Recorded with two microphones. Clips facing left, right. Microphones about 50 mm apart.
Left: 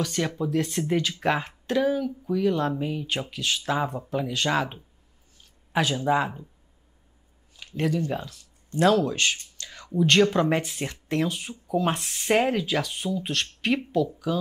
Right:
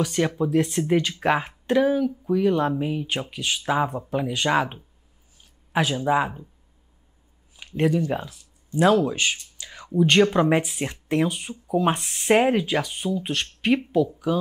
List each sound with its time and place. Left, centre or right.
0.4 s speech: centre
7.5 s a sound: centre
8.1 s speech: centre
9.6 s a sound: centre
10.5 s speech: centre
12.4 s speech: centre